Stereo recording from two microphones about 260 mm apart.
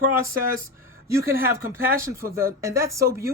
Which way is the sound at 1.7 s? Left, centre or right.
Centre.